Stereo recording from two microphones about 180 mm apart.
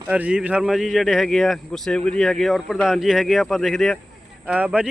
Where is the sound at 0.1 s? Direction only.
5° right (ahead or behind).